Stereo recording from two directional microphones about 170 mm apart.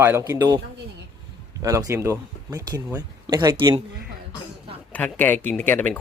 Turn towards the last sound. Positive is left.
turn(degrees=10)  # may be behind; listen again after turning